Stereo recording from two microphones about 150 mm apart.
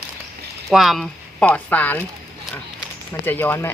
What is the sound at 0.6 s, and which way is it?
Speech, centre (ahead or behind).